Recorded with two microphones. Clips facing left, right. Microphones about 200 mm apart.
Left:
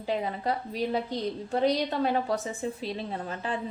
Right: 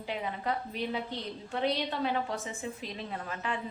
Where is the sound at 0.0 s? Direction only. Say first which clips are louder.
Left 5 dB; 35° left (ahead or behind).